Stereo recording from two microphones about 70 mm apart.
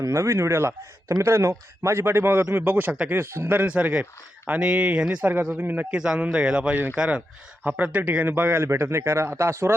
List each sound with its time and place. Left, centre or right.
0.0 s speech: right
3.1 s speech: right
3.8 s speech: centre
5.2 s speech: right
5.9 s speech: centre; by 9.7 s right